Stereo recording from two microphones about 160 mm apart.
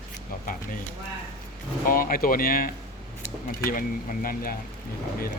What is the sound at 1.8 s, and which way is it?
Speech, 60° left (ahead or behind).